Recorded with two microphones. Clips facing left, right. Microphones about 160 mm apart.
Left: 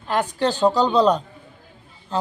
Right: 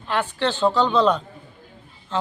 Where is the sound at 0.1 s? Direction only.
40° left (ahead or behind).